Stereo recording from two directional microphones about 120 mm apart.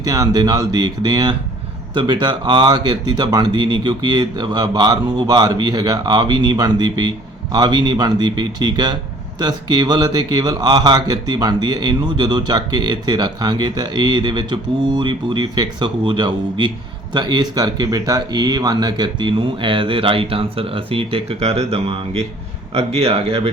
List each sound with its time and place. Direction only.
0.0 s speech: 30° right (ahead or behind); by 23.5 s 55° right (ahead or behind)